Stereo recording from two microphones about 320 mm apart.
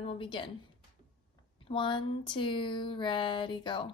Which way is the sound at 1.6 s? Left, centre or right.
Centre.